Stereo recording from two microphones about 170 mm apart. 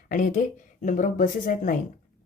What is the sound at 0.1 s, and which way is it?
Speech, 50° left (ahead or behind).